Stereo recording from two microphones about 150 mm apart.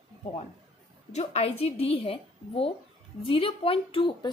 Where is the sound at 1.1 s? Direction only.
45° left (ahead or behind).